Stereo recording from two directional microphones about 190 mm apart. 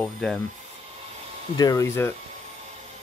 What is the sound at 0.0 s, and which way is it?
Speech, 5° left (ahead or behind).